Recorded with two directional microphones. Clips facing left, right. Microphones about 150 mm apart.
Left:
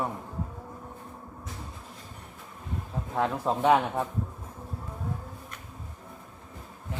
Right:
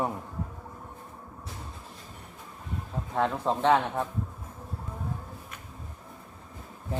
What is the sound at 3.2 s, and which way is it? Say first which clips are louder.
Speech: even; 5° left (ahead or behind).